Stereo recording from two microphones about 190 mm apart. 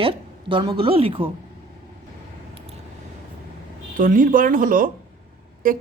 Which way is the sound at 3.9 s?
45° right (ahead or behind).